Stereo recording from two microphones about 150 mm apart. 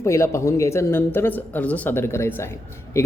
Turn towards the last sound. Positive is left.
turn(degrees=15)  # may be behind; listen again after turning